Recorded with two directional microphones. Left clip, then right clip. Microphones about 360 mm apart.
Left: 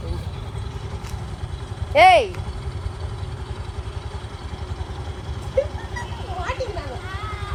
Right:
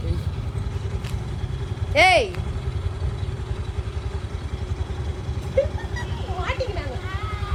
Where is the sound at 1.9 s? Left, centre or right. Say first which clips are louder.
Left 4 dB; centre.